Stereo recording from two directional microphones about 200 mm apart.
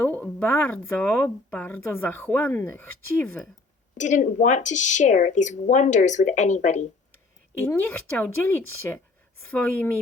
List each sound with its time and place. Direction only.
0.2 s speech: 10° left (ahead or behind)
3.9 s a woman's voice: 35° left (ahead or behind)
7.6 s speech: 10° left (ahead or behind)